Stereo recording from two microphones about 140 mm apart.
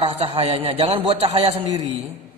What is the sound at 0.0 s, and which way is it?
A man's voice, 45° right (ahead or behind).